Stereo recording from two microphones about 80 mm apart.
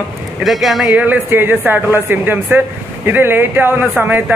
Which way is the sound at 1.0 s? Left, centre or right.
Right.